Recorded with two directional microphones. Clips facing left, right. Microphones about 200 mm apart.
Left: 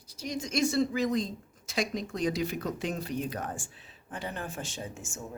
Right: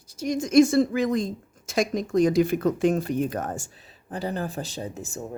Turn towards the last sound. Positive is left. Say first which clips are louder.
# right 6 dB
turn(degrees=-35)  # may be behind; listen again after turning